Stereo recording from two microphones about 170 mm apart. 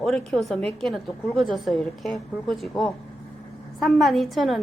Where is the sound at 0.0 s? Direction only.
Centre (ahead or behind).